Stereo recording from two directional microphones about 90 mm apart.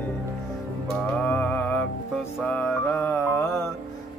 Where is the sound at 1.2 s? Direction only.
15° left (ahead or behind).